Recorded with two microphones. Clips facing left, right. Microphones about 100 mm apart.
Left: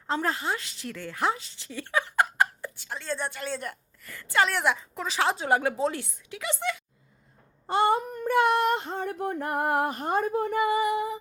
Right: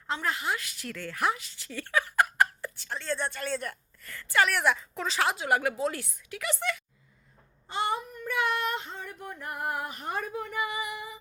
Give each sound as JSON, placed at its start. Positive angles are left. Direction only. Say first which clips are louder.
{"t": 0.1, "sound": "a woman's voice", "louder": "left 3 dB", "side_deg": 35}
{"t": 7.7, "sound": "child singing", "louder": "left 7 dB", "side_deg": 45}
{"t": 10.2, "sound": "female singing", "louder": "left 8 dB", "side_deg": 35}